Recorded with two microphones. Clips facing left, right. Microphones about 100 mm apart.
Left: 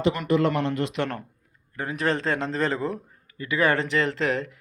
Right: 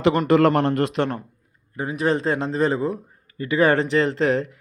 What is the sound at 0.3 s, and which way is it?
Speech, 60° right (ahead or behind).